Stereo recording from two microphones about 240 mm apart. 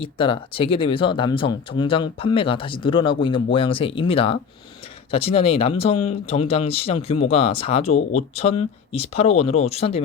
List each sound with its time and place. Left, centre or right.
0.0 s speech: left